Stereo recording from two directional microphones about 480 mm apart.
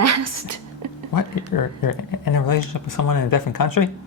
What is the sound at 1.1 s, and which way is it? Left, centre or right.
Speech, left.